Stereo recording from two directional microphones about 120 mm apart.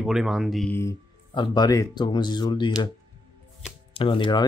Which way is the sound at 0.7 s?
20° left (ahead or behind).